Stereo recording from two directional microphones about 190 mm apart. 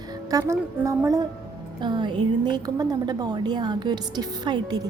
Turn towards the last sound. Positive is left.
turn(degrees=-20)  # may be behind; listen again after turning